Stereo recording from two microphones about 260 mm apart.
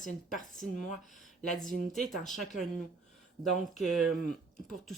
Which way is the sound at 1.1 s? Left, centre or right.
Centre.